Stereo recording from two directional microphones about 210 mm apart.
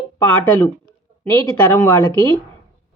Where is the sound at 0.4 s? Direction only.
10° left (ahead or behind).